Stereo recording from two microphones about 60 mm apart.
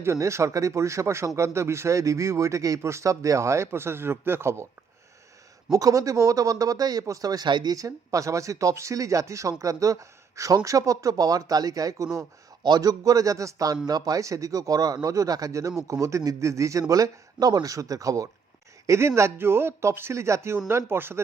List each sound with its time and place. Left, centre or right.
0.0 s a man's voice: right
5.7 s speech: right
13.8 s a man's voice: right
16.9 s speech: right
18.9 s a man's voice: right